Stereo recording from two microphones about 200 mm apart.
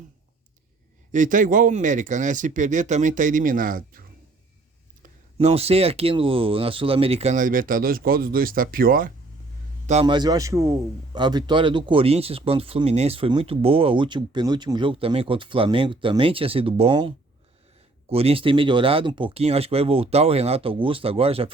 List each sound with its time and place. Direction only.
1.1 s speech: 40° right (ahead or behind)
5.4 s speech: 30° right (ahead or behind)
9.8 s a man's voice: 30° right (ahead or behind)